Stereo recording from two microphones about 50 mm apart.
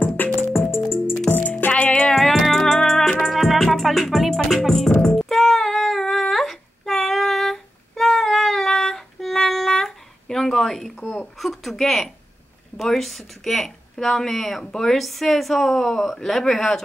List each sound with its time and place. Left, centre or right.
0.2 s music: left
1.7 s music: left
2.0 s music: centre
3.3 s music: centre
12.7 s speech: centre